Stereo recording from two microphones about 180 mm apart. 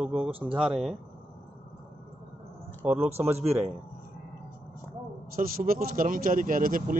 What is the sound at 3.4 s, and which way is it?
Speech, 35° right (ahead or behind).